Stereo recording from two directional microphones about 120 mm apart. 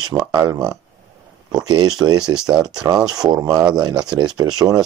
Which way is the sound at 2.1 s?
5° right (ahead or behind).